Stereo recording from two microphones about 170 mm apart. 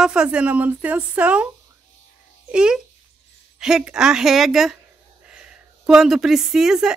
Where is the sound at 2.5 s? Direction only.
5° right (ahead or behind).